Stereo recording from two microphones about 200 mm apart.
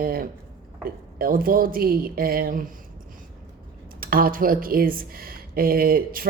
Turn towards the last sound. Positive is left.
turn(degrees=-45)  # may be behind; listen again after turning